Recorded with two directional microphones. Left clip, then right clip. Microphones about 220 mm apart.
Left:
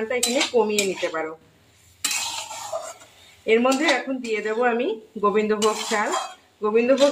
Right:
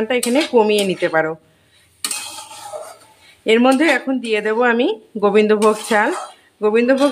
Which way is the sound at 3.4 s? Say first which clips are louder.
Right 5 dB; 55° right (ahead or behind).